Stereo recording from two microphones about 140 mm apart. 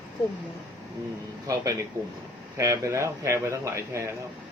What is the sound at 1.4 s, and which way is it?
A man's voice, 25° right (ahead or behind).